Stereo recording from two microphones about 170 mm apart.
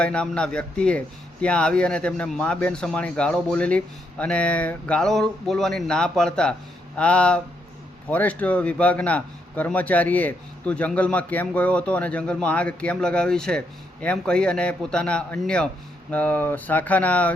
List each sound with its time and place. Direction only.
0.0 s a man's voice: 5° left (ahead or behind)